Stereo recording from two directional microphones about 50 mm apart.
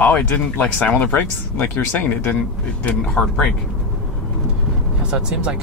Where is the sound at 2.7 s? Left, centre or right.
Left.